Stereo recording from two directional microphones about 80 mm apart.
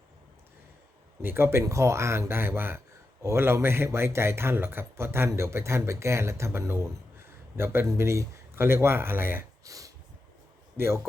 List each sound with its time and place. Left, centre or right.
1.2 s a man's voice: right
9.6 s a sound: right
10.8 s a man's voice: right